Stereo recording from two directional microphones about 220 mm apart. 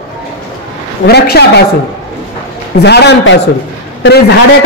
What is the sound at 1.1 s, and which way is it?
Speech, 50° left (ahead or behind).